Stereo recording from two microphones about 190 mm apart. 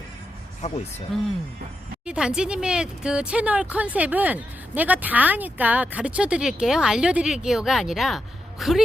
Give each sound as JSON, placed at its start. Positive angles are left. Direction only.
{"t": 0.6, "sound": "speech", "side_deg": 35}
{"t": 1.1, "sound": "a woman's voice", "side_deg": 0}